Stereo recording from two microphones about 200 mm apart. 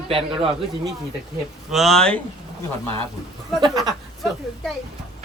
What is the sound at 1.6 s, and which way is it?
Speech, centre (ahead or behind).